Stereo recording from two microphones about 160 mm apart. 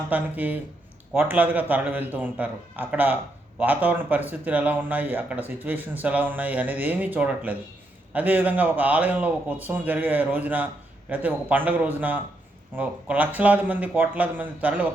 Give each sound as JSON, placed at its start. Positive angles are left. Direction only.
{"t": 0.1, "sound": "speech", "side_deg": -10}